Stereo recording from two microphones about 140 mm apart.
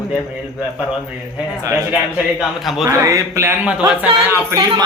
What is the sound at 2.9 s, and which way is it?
Speech, 25° right (ahead or behind).